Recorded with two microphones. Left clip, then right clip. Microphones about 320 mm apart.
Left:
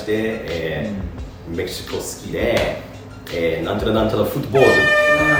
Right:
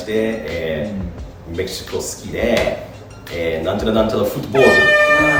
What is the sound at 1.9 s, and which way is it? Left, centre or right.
Speech, centre.